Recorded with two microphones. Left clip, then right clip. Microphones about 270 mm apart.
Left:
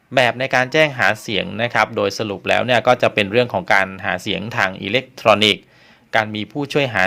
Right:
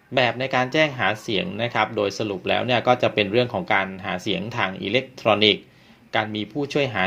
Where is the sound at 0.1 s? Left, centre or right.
Left.